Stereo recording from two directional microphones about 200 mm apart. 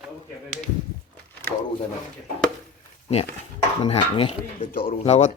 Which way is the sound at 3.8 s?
30° left (ahead or behind).